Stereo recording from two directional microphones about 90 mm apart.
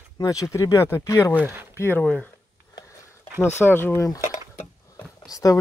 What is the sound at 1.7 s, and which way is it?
Speech, 25° left (ahead or behind).